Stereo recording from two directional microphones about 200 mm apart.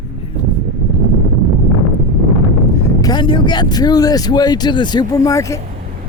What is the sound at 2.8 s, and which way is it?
Speech, 20° left (ahead or behind).